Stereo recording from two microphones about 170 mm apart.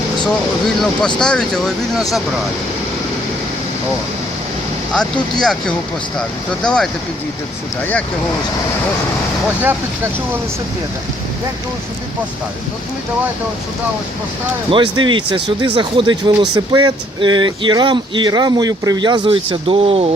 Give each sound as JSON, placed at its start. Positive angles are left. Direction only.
{"t": 0.8, "sound": "speech", "side_deg": 5}
{"t": 4.9, "sound": "speech", "side_deg": 5}
{"t": 14.7, "sound": "speech", "side_deg": -25}